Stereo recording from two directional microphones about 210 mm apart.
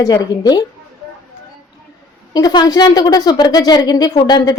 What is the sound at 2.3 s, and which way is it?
A woman's voice, 20° left (ahead or behind).